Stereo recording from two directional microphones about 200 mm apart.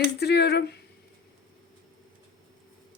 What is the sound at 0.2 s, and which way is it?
Speech, 55° left (ahead or behind).